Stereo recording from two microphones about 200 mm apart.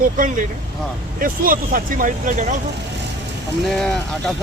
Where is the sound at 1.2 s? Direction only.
45° right (ahead or behind).